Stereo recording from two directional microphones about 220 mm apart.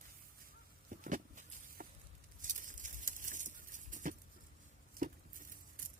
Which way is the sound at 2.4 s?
35° right (ahead or behind).